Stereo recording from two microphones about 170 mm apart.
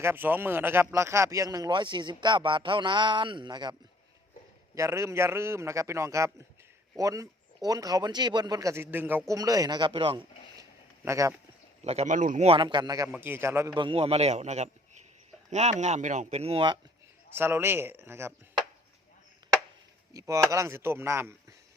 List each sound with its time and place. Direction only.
0.0 s a man's voice: 10° right (ahead or behind); by 10.2 s 35° right (ahead or behind)
10.6 s a sound: 20° right (ahead or behind)
11.9 s speech: 45° right (ahead or behind)
12.5 s speech: 30° right (ahead or behind)
13.1 s a man's voice: 10° right (ahead or behind)
13.7 s a man's voice: 30° right (ahead or behind)
17.3 s a man's voice: 15° right (ahead or behind)
20.1 s a man's voice: 20° right (ahead or behind)